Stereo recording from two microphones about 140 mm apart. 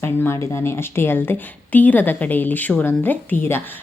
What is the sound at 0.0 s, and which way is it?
Speech, 15° left (ahead or behind).